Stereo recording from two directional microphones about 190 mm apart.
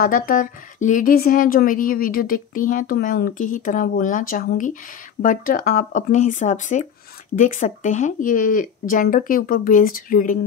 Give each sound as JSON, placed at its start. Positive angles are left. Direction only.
{"t": 0.0, "sound": "a woman's voice", "side_deg": 50}